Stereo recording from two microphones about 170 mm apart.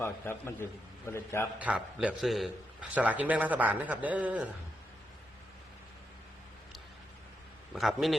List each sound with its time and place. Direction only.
0.0 s a man's voice: 15° left (ahead or behind)
1.5 s a man's voice: 5° right (ahead or behind)
7.7 s a man's voice: centre (ahead or behind)